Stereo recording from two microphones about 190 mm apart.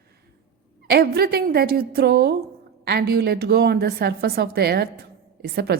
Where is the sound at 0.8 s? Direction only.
55° right (ahead or behind).